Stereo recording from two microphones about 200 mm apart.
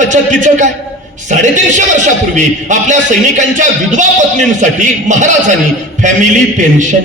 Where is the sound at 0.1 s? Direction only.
40° right (ahead or behind).